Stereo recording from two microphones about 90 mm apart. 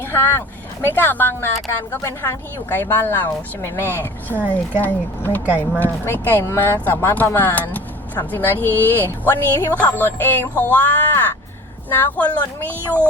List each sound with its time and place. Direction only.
0.0 s vehicle: 25° left (ahead or behind)
0.9 s speech: 20° left (ahead or behind)
5.5 s speech: 15° right (ahead or behind)
5.8 s speech: 20° left (ahead or behind)